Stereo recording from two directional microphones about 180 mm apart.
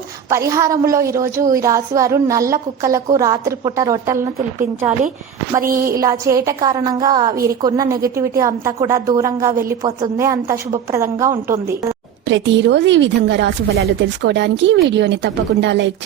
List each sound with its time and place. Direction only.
0.3 s a woman's voice: 15° right (ahead or behind)
5.5 s a woman's voice: 50° right (ahead or behind)
6.0 s a woman's voice: 20° right (ahead or behind)
12.3 s speech: 85° right